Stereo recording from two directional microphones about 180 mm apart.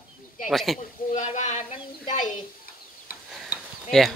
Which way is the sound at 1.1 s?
40° left (ahead or behind).